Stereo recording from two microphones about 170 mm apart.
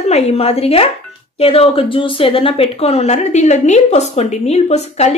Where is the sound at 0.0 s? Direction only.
35° left (ahead or behind).